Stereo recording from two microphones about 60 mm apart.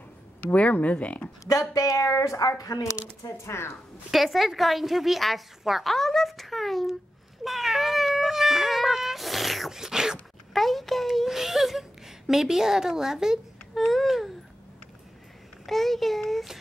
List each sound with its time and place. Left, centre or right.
0.4 s speech: left
1.4 s speech: left
3.4 s speech: left
4.1 s a woman's voice: centre
7.4 s cat: centre
10.5 s a woman's voice: centre
13.7 s a woman's voice: centre
15.6 s a woman's voice: centre